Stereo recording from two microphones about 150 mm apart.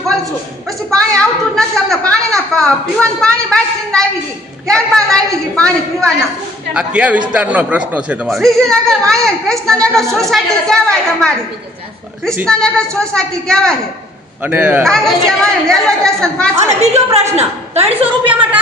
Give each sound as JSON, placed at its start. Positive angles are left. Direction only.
{"t": 0.7, "sound": "a woman's voice", "side_deg": 0}
{"t": 6.7, "sound": "speech", "side_deg": -10}
{"t": 8.4, "sound": "a woman's voice", "side_deg": 0}
{"t": 12.5, "sound": "a woman's voice", "side_deg": 5}
{"t": 14.4, "sound": "speech", "side_deg": -15}
{"t": 14.8, "sound": "a woman's voice", "side_deg": 5}
{"t": 16.8, "sound": "a woman's voice", "side_deg": -45}
{"t": 18.3, "sound": "speech", "side_deg": -10}